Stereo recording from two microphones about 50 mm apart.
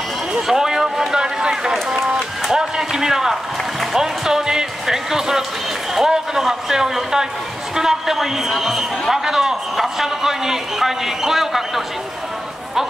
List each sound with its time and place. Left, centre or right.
0.3 s run: centre
2.5 s a sound: centre
3.9 s music: centre
5.9 s a man's voice: centre